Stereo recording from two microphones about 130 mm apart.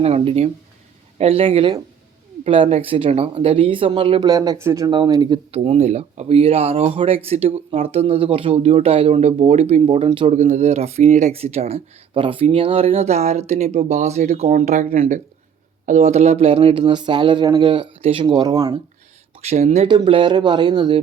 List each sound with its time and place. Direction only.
0.0 s speech: 50° right (ahead or behind)
4.3 s speech: 30° right (ahead or behind)
4.9 s speech: 35° right (ahead or behind)
5.5 s speech: 50° right (ahead or behind)
10.3 s speech: 65° right (ahead or behind)
14.5 s speech: 75° right (ahead or behind)
14.8 s speech: 50° right (ahead or behind)
16.8 s speech: 35° right (ahead or behind)
19.4 s speech: 55° right (ahead or behind)
19.9 s speech: 40° right (ahead or behind)